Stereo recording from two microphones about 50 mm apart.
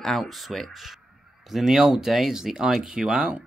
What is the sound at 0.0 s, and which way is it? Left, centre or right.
Speech, centre.